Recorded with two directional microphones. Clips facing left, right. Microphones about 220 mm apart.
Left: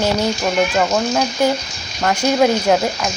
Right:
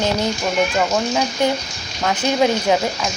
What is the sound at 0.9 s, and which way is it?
A woman's voice, 5° left (ahead or behind).